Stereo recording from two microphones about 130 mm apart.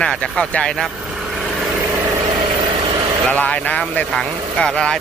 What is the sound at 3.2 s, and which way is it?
Speech, 10° left (ahead or behind).